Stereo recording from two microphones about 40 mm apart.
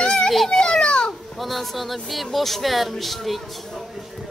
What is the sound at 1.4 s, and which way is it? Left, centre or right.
Speech, centre.